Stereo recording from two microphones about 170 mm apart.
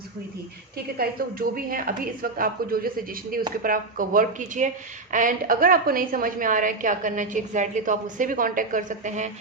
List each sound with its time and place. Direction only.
0.9 s a woman's voice: 60° right (ahead or behind); by 9.3 s 45° right (ahead or behind)